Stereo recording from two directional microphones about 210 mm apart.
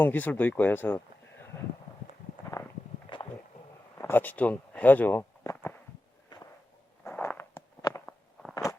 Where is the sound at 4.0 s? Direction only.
10° left (ahead or behind).